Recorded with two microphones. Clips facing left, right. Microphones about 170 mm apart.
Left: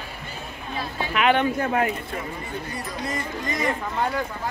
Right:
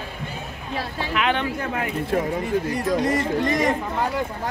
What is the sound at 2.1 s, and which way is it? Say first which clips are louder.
Speech: right 10 dB; 90° right.